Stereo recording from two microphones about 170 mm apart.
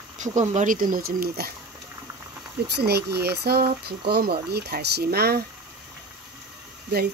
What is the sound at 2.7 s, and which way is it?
Speech, 75° right (ahead or behind).